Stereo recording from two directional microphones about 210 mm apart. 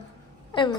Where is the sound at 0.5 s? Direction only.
20° left (ahead or behind).